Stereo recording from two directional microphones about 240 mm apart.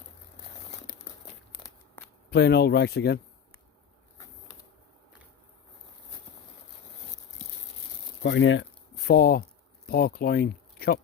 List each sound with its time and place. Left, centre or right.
2.0 s a sound: centre
2.3 s speech: left
8.2 s speech: left
9.0 s speech: left